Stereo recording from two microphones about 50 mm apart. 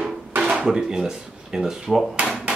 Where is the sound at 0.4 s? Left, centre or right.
Centre.